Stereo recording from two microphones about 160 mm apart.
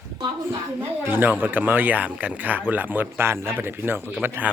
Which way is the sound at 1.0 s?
10° right (ahead or behind).